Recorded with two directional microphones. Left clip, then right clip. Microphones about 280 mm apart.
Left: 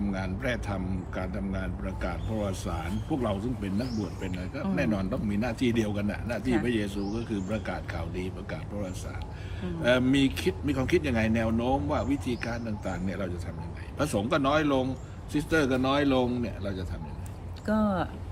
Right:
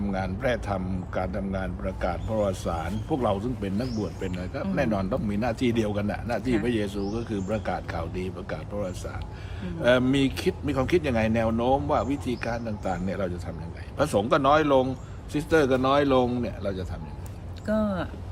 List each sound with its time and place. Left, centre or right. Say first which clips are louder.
0.1 s speech: right 7 dB; centre
17.7 s speech: right 1 dB; centre